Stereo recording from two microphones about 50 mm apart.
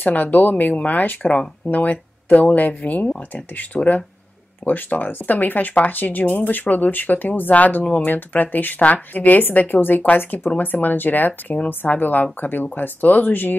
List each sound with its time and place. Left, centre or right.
0.0 s speech: left